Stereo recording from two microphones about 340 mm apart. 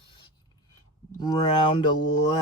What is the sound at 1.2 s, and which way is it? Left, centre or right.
Speech, centre.